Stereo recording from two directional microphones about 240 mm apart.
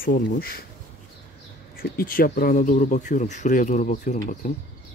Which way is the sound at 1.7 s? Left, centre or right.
Left.